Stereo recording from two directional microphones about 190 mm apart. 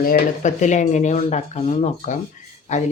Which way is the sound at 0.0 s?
45° left (ahead or behind).